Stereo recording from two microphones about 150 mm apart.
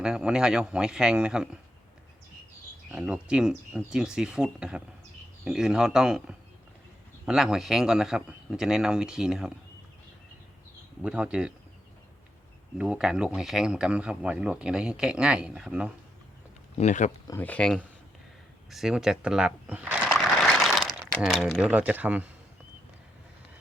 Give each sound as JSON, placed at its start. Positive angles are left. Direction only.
{"t": 0.0, "sound": "speech", "side_deg": -5}
{"t": 2.9, "sound": "speech", "side_deg": -5}
{"t": 11.0, "sound": "speech", "side_deg": -5}
{"t": 12.7, "sound": "speech", "side_deg": -5}
{"t": 16.7, "sound": "speech", "side_deg": 50}
{"t": 17.4, "sound": "speech", "side_deg": 10}
{"t": 18.7, "sound": "sewing machine", "side_deg": -5}
{"t": 21.2, "sound": "speech", "side_deg": 0}